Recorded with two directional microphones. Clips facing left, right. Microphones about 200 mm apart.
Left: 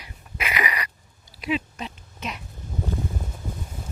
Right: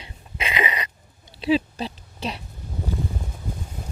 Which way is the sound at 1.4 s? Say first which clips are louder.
Right 6 dB; 30° right (ahead or behind).